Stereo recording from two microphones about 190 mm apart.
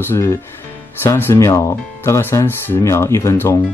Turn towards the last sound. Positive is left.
turn(degrees=15)  # may be behind; listen again after turning